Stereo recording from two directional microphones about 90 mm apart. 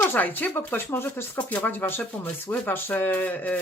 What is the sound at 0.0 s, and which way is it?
Speech, 20° left (ahead or behind).